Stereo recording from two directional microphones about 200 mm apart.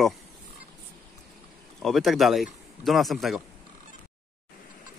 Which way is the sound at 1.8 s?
Centre (ahead or behind).